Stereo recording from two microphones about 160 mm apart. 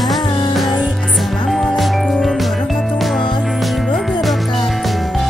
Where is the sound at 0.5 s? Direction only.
Centre (ahead or behind).